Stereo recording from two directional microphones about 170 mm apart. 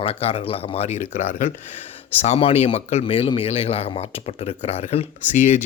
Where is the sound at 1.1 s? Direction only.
50° left (ahead or behind).